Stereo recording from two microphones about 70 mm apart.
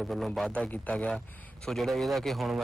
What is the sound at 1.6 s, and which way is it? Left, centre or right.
Speech, centre.